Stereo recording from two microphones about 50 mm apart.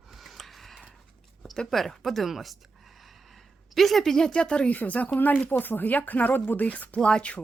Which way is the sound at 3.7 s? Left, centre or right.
Centre.